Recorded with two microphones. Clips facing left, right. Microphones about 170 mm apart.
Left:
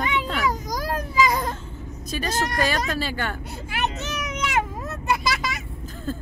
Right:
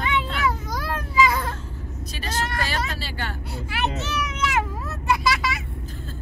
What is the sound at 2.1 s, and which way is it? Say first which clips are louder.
Speech: left 4 dB; 45° left (ahead or behind).